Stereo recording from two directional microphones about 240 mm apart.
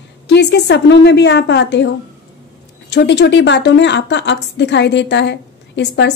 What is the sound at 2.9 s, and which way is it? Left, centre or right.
A woman's voice, left.